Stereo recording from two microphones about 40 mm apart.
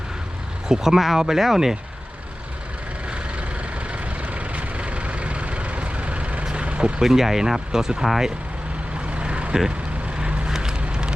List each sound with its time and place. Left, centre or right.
0.7 s speech: centre
3.1 s vehicle: right
7.0 s speech: centre
9.0 s vehicle: right